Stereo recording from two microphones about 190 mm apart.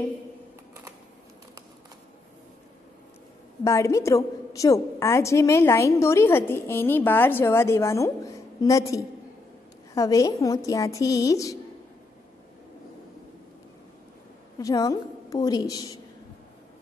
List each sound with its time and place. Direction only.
3.6 s a woman's voice: 15° left (ahead or behind)
14.6 s a woman's voice: 20° left (ahead or behind)